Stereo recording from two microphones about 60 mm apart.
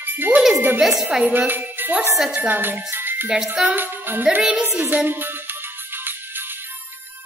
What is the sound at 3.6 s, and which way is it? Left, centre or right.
Music, right.